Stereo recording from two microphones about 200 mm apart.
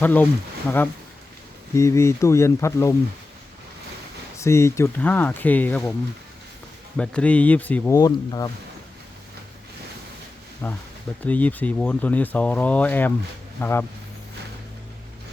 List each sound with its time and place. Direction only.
0.0 s speech: 10° left (ahead or behind)
1.7 s speech: 15° left (ahead or behind)
4.4 s speech: 15° left (ahead or behind)
6.9 s speech: 5° left (ahead or behind)
10.6 s speech: 10° left (ahead or behind)